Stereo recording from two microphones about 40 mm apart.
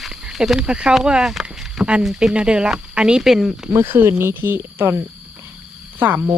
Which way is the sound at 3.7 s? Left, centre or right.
Right.